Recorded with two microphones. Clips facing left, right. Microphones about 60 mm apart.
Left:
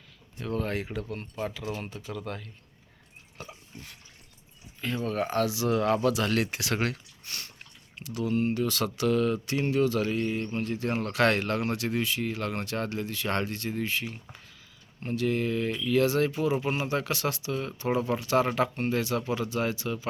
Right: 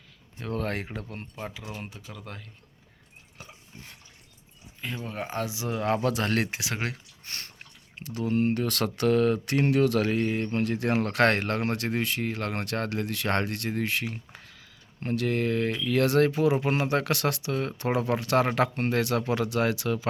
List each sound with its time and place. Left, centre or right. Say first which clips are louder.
0.4 s speech: even; right
1.4 s speech: left 5 dB; centre
3.4 s pig: left 4 dB; centre
5.0 s speech: left 6 dB; centre
5.8 s speech: right 2 dB; right
6.5 s speech: left 3 dB; centre
7.3 s a sound: right 1 dB; right
7.9 s speech: right 1 dB; right
11.0 s speech: even; right